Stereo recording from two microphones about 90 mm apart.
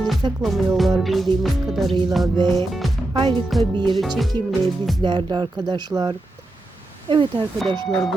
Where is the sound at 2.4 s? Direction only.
60° right (ahead or behind).